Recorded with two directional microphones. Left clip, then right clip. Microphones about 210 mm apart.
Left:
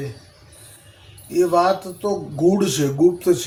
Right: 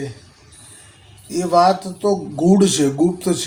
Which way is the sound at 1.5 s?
20° right (ahead or behind).